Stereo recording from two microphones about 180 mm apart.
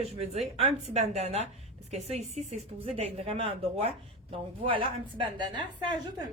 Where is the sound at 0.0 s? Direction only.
35° right (ahead or behind).